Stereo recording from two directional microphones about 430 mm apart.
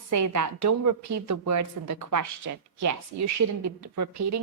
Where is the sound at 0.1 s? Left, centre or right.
Right.